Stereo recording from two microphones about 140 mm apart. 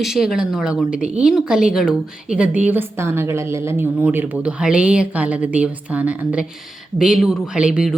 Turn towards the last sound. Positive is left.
turn(degrees=-5)  # may be behind; listen again after turning